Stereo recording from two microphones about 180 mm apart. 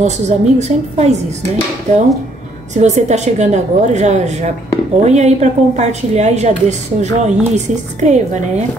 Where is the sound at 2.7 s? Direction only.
40° right (ahead or behind).